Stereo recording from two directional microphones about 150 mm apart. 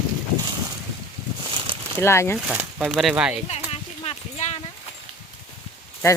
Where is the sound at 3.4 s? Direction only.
45° left (ahead or behind).